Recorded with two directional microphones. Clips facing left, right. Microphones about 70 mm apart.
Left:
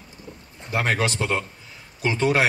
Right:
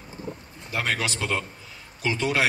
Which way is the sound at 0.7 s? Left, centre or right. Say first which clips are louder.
Left 4 dB; left.